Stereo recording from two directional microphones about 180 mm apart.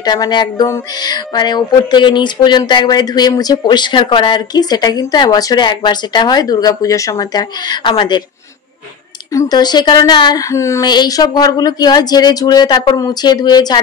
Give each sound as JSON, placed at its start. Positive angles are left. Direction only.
{"t": 0.0, "sound": "speech", "side_deg": 20}
{"t": 9.3, "sound": "speech", "side_deg": 20}